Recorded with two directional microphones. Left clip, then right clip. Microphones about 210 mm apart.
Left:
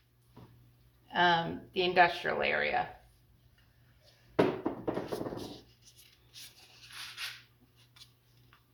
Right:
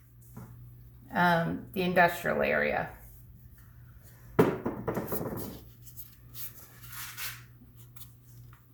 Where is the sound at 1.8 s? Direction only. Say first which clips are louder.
Right 1 dB; 45° left (ahead or behind).